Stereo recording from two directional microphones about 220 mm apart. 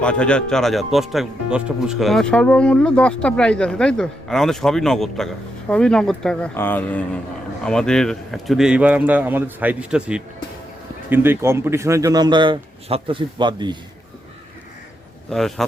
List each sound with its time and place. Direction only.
0.0 s a man's voice: 5° left (ahead or behind); by 13.7 s 20° right (ahead or behind)
15.3 s speech: centre (ahead or behind)